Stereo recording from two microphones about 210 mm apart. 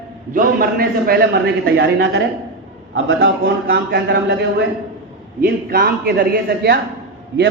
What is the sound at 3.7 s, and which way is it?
Speech, 50° right (ahead or behind).